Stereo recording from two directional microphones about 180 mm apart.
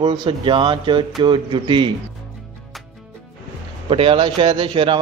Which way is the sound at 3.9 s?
30° right (ahead or behind).